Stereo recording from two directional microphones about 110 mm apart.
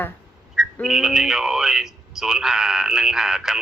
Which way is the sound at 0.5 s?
5° right (ahead or behind).